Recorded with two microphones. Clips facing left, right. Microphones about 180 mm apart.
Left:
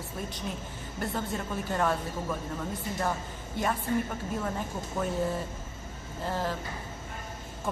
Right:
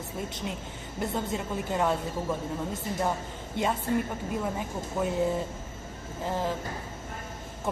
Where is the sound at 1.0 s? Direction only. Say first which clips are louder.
Right 2 dB; 20° right (ahead or behind).